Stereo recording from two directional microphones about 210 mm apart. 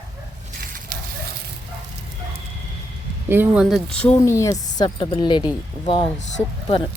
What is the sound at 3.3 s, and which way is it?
Speech, 5° right (ahead or behind).